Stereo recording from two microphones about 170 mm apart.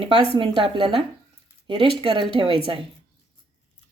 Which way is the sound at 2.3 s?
30° right (ahead or behind).